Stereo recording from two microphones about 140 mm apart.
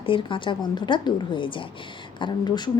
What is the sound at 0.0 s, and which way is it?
A woman's voice, 35° left (ahead or behind).